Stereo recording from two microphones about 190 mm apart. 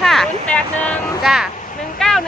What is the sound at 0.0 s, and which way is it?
Vehicle, centre (ahead or behind).